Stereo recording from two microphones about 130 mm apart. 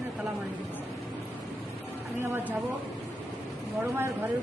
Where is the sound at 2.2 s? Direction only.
15° right (ahead or behind).